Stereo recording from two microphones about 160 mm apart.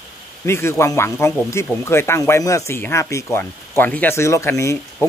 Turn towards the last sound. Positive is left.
turn(degrees=15)  # may be behind; listen again after turning